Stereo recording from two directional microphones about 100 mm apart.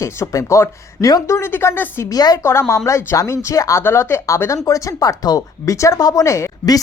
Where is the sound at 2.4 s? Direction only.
25° left (ahead or behind).